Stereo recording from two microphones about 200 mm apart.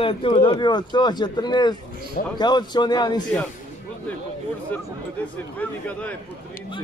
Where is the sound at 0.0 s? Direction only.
25° left (ahead or behind).